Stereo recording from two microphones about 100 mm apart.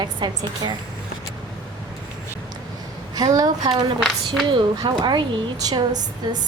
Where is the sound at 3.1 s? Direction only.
40° right (ahead or behind).